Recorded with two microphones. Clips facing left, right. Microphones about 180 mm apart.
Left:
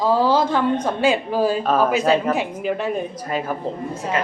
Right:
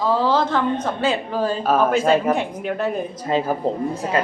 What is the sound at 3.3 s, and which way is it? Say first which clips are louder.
Speech: right 5 dB; 35° right (ahead or behind).